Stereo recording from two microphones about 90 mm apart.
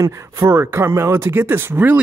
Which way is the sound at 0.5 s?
25° right (ahead or behind).